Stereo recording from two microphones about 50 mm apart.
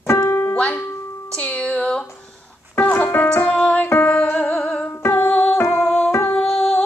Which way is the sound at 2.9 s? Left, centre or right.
Left.